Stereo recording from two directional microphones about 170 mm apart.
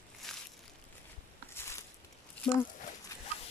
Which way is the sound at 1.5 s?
15° left (ahead or behind).